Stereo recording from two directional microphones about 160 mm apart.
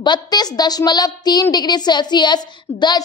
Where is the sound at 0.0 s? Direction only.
25° left (ahead or behind).